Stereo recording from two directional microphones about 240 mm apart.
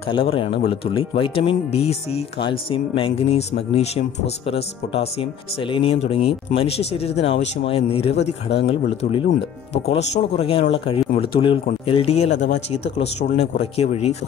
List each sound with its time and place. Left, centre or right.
0.0 s speech: left